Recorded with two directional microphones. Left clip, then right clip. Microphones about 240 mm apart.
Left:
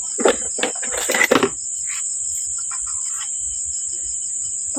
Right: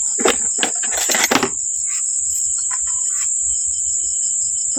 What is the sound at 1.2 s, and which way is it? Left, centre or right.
Coin, right.